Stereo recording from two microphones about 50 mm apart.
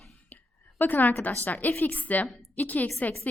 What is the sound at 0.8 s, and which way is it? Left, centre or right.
A woman's voice, left.